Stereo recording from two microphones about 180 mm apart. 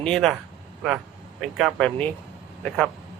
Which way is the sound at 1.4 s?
Centre (ahead or behind).